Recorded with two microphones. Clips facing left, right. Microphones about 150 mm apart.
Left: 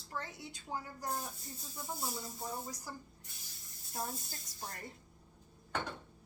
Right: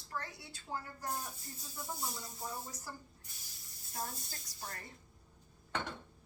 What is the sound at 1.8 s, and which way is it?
Speech, centre (ahead or behind).